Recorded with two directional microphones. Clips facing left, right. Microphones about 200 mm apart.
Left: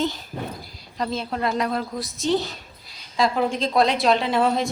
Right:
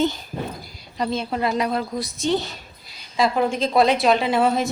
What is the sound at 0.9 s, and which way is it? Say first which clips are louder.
A woman's voice: right 2 dB; centre (ahead or behind).